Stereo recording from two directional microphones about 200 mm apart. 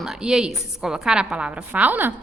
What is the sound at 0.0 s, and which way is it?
A woman's voice, 5° right (ahead or behind).